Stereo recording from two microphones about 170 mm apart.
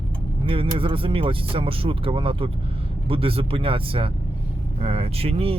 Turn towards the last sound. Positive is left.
turn(degrees=-35)  # may be behind; listen again after turning